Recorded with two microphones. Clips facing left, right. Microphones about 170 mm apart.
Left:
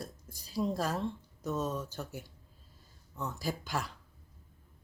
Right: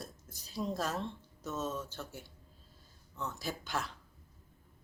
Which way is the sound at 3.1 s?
10° left (ahead or behind).